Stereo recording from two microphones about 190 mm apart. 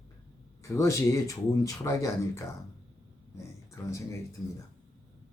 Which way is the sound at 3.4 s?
15° left (ahead or behind).